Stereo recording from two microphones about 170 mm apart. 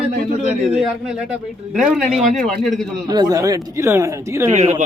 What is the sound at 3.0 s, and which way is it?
A man's voice, 25° right (ahead or behind).